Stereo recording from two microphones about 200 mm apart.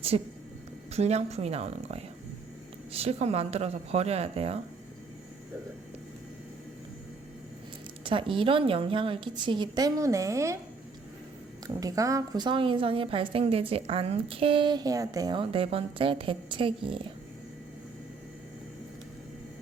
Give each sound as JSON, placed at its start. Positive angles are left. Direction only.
{"t": 0.1, "sound": "speech", "side_deg": -30}
{"t": 8.0, "sound": "a woman's voice", "side_deg": -25}
{"t": 11.7, "sound": "a woman's voice", "side_deg": -15}